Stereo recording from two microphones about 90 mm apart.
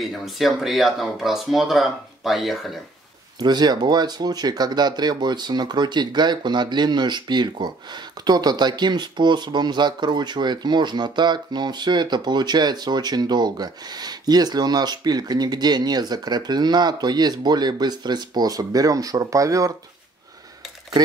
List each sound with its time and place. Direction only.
0.0 s speech: centre (ahead or behind)
3.3 s speech: 50° right (ahead or behind)